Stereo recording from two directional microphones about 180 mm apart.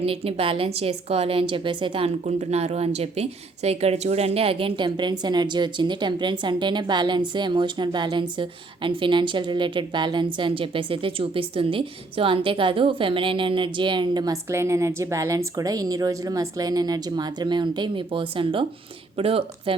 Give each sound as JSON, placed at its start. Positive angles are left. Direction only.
{"t": 0.0, "sound": "a woman's voice", "side_deg": -30}